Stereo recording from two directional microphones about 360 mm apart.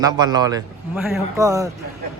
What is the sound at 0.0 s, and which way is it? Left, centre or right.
Speech, centre.